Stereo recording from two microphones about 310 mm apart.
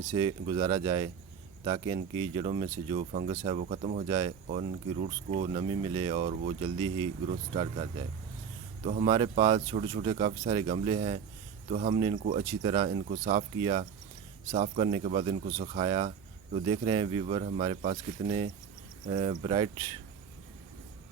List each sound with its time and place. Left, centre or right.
0.1 s speech: centre